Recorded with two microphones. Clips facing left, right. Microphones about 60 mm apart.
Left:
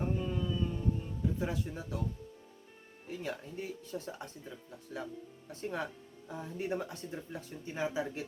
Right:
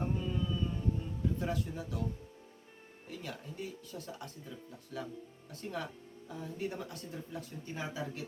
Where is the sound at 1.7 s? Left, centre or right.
Left.